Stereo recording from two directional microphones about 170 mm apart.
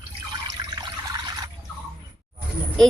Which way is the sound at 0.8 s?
25° right (ahead or behind).